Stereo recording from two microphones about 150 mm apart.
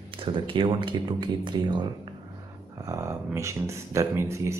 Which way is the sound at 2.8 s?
20° right (ahead or behind).